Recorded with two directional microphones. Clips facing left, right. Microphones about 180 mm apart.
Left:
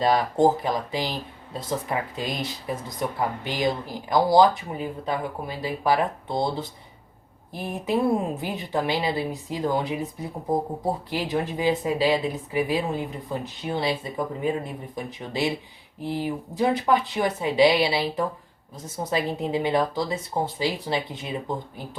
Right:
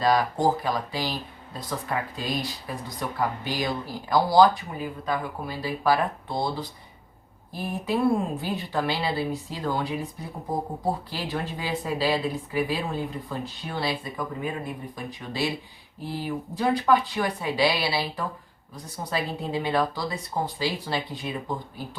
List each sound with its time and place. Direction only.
0.0 s speech: 25° left (ahead or behind)
11.1 s speech: 20° left (ahead or behind)